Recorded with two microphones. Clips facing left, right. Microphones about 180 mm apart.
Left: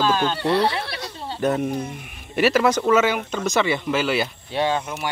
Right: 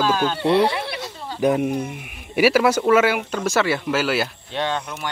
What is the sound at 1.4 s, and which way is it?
Speech, 10° right (ahead or behind).